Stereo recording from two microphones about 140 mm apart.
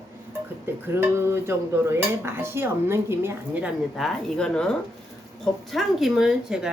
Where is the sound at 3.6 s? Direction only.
Centre (ahead or behind).